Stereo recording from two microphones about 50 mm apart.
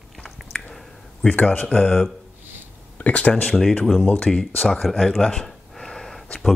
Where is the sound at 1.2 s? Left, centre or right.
Centre.